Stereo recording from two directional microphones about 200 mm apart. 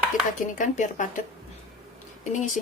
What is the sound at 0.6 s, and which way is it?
Speech, 40° left (ahead or behind).